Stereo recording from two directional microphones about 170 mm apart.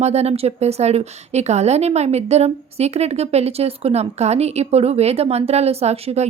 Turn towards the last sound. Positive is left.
turn(degrees=-40)  # may be behind; listen again after turning